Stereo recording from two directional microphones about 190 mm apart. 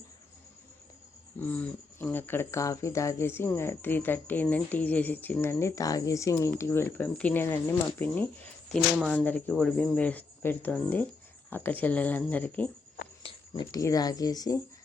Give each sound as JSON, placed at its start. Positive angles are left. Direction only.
{"t": 1.4, "sound": "speech", "side_deg": 10}
{"t": 13.2, "sound": "speech", "side_deg": 20}